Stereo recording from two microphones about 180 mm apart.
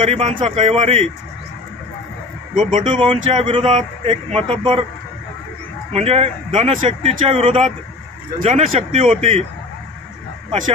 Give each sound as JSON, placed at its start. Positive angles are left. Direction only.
{"t": 0.0, "sound": "speech", "side_deg": -30}
{"t": 2.5, "sound": "speech", "side_deg": -45}
{"t": 2.8, "sound": "speech", "side_deg": -30}
{"t": 5.9, "sound": "speech", "side_deg": -35}
{"t": 8.7, "sound": "speech", "side_deg": -30}